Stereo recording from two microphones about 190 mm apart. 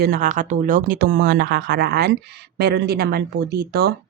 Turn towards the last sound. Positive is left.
turn(degrees=-60)  # may be behind; listen again after turning